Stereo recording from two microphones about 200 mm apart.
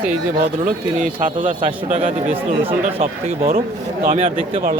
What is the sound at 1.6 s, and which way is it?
Speech, 30° right (ahead or behind).